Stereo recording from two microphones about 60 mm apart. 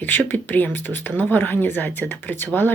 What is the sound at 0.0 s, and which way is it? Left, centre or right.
A woman's voice, left.